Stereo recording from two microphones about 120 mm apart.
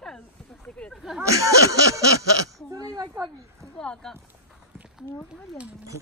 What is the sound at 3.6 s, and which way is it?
Speech, 5° left (ahead or behind).